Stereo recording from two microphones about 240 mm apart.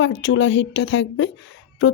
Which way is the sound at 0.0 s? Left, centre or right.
Left.